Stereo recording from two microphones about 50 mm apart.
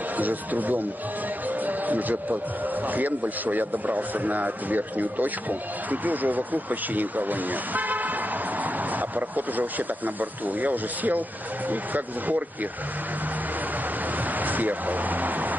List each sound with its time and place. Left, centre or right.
0.2 s a man's voice: right
9.1 s a man's voice: right
14.4 s speech: right